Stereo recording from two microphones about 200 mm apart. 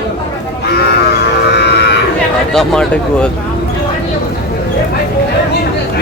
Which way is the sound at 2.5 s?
5° left (ahead or behind).